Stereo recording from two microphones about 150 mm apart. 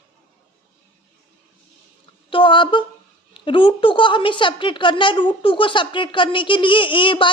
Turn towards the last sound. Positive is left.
turn(degrees=35)  # may be behind; listen again after turning